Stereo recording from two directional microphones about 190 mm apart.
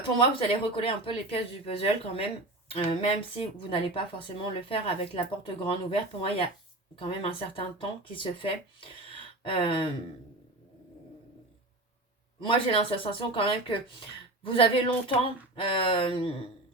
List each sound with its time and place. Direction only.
0.2 s speech: 30° left (ahead or behind)
12.5 s speech: 30° left (ahead or behind)